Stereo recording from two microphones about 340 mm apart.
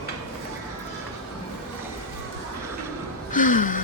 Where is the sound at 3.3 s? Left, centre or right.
Left.